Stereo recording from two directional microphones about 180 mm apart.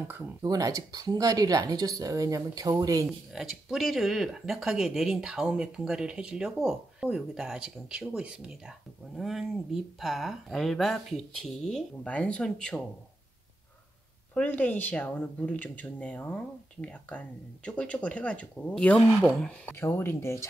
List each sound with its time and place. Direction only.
0.1 s speech: 20° right (ahead or behind)
3.1 s speech: centre (ahead or behind)
14.3 s speech: 10° left (ahead or behind)